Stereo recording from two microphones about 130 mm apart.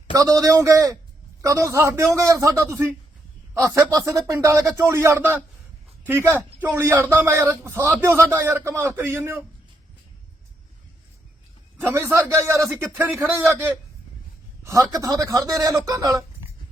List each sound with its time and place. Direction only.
0.1 s a man's voice: 25° right (ahead or behind)
11.8 s a man's voice: 20° right (ahead or behind)
14.7 s a man's voice: 25° right (ahead or behind)